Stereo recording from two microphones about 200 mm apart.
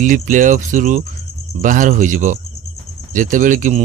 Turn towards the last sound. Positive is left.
turn(degrees=-40)  # may be behind; listen again after turning